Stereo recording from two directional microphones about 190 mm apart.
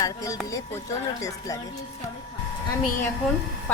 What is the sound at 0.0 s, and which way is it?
Speech, 15° left (ahead or behind).